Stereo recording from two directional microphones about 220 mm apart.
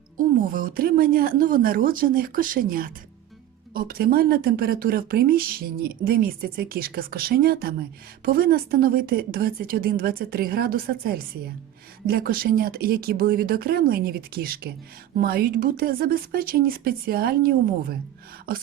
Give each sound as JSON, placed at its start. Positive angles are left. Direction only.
{"t": 0.2, "sound": "a woman's voice", "side_deg": -40}